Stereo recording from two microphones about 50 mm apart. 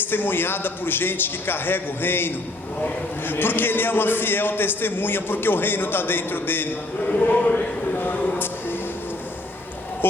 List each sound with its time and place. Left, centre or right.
0.1 s a man's voice: left
7.1 s speech: left
8.0 s a sound: left
10.0 s a man's voice: left